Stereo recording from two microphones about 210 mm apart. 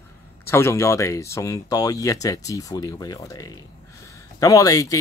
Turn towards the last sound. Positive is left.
turn(degrees=15)  # may be behind; listen again after turning